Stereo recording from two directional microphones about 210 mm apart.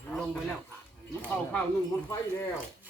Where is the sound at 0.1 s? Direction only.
5° left (ahead or behind).